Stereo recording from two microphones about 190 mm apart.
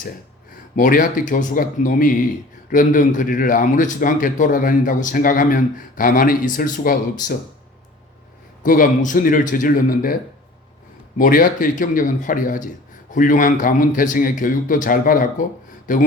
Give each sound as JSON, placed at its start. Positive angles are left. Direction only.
{"t": 0.8, "sound": "speech", "side_deg": 45}
{"t": 8.6, "sound": "speech", "side_deg": 45}
{"t": 11.2, "sound": "speech", "side_deg": 50}